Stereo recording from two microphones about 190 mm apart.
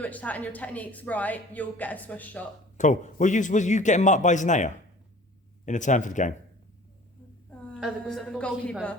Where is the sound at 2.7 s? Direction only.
40° left (ahead or behind).